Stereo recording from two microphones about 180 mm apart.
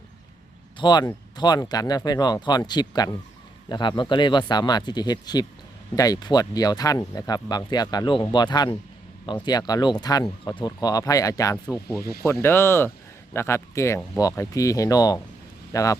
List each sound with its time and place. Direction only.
0.8 s speech: 25° left (ahead or behind)